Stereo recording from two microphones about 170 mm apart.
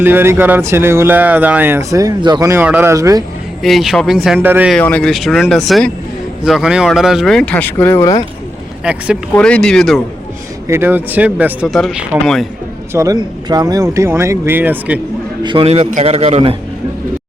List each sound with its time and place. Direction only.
0.0 s speech: 10° right (ahead or behind)
1.9 s speech: 20° right (ahead or behind)
3.6 s speech: centre (ahead or behind)
4.7 s speech: 10° left (ahead or behind)
8.8 s speech: 5° right (ahead or behind)
9.3 s speech: 5° left (ahead or behind)
10.7 s speech: 10° right (ahead or behind)
12.9 s speech: 20° right (ahead or behind)
15.4 s speech: 35° right (ahead or behind)